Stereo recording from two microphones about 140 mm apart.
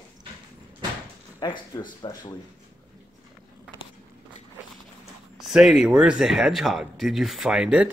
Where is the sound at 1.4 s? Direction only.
30° left (ahead or behind).